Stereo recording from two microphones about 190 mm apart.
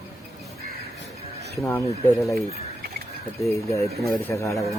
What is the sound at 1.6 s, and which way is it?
Speech, 15° left (ahead or behind).